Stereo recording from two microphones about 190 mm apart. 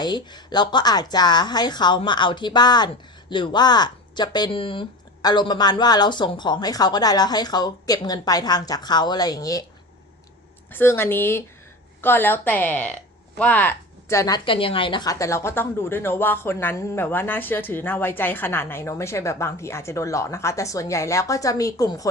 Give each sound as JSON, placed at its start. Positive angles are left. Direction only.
{"t": 0.0, "sound": "speech", "side_deg": 20}
{"t": 10.7, "sound": "a woman's voice", "side_deg": 10}